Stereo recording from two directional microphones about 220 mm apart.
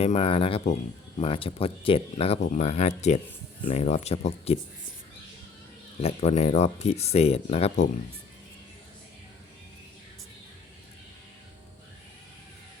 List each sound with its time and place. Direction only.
0.0 s speech: 25° left (ahead or behind)
6.0 s speech: 30° left (ahead or behind)